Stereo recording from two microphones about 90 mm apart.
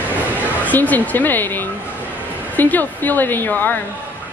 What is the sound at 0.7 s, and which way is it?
A woman's voice, 20° left (ahead or behind).